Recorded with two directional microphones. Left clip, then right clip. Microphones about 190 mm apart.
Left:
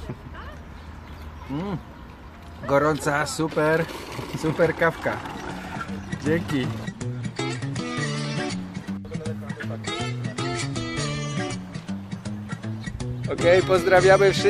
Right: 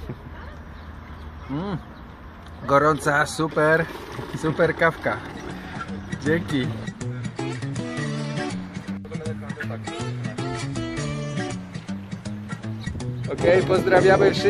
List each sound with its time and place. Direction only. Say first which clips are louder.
1.5 s speech: right 1 dB; centre (ahead or behind)
5.8 s music: even; centre (ahead or behind)
13.7 s speech: left 1 dB; 15° left (ahead or behind)